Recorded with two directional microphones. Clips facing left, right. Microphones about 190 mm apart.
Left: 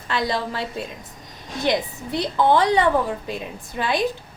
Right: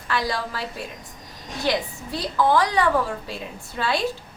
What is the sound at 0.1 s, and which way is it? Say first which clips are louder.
A woman's voice: left 2 dB; 25° left (ahead or behind).